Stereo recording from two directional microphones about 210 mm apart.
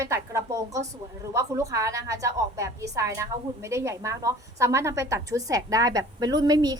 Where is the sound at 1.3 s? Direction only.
15° right (ahead or behind).